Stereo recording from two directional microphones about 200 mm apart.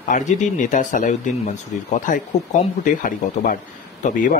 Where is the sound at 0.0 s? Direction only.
35° left (ahead or behind).